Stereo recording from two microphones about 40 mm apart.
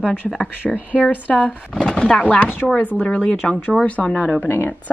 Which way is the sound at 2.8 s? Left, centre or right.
Left.